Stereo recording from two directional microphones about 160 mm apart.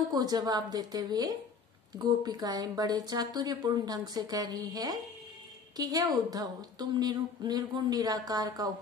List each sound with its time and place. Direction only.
0.1 s a woman's voice: 25° right (ahead or behind)